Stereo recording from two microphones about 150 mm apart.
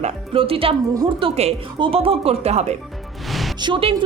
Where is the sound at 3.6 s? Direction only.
35° right (ahead or behind).